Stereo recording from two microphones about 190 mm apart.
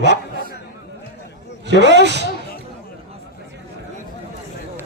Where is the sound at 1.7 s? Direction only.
65° right (ahead or behind).